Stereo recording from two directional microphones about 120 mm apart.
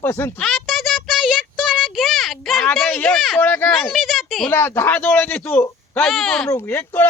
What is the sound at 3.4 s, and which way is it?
Speech, 15° left (ahead or behind).